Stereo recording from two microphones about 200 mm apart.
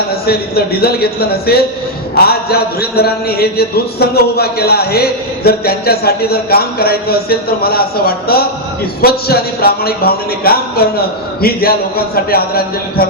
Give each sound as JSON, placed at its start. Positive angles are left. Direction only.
{"t": 0.3, "sound": "a man's voice", "side_deg": 50}